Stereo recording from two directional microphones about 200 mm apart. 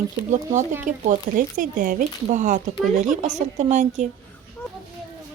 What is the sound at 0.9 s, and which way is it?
Speech, 40° right (ahead or behind).